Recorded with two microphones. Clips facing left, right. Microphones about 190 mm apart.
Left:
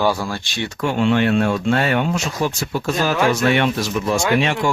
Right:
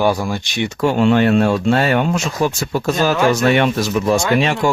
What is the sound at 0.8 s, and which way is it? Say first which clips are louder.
Speech: right 4 dB; 40° right (ahead or behind).